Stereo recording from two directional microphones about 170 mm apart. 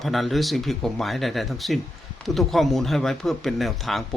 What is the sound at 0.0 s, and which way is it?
Speech, centre (ahead or behind).